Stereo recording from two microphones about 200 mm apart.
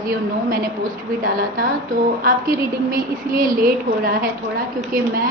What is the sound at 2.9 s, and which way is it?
Speech, 45° right (ahead or behind).